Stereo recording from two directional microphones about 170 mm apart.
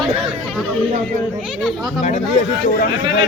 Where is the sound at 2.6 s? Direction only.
60° left (ahead or behind).